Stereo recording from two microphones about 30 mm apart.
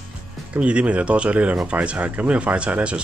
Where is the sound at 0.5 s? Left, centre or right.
Right.